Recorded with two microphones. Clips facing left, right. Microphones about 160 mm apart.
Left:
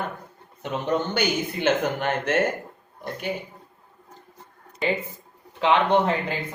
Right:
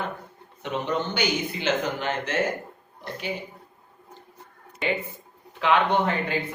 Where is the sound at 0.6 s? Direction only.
50° left (ahead or behind).